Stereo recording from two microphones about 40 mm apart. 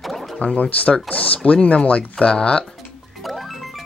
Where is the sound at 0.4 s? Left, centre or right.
Left.